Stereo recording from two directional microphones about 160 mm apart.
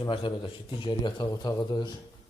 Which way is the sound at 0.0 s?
30° left (ahead or behind).